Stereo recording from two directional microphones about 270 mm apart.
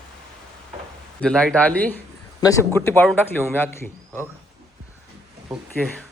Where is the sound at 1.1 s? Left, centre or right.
Centre.